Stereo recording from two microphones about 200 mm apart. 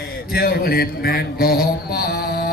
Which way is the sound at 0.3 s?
50° left (ahead or behind).